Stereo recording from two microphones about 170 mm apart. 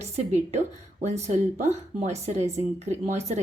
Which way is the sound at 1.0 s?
40° right (ahead or behind).